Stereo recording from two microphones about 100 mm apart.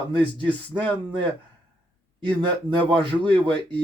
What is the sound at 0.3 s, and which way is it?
Speech, 55° right (ahead or behind).